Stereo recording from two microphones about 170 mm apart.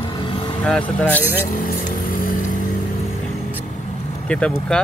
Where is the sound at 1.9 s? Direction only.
55° left (ahead or behind).